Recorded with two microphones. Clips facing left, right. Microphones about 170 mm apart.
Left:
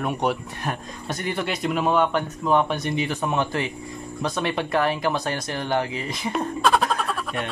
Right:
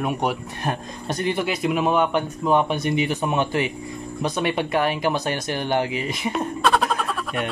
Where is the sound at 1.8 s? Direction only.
15° right (ahead or behind).